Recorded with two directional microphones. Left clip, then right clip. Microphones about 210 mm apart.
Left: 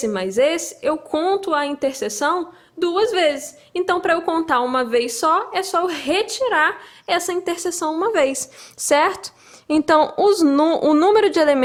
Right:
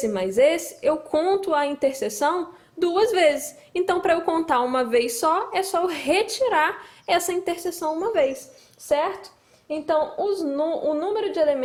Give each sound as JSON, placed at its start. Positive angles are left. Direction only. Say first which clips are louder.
{"t": 0.0, "sound": "a woman's voice", "louder": "left 1 dB", "side_deg": 10}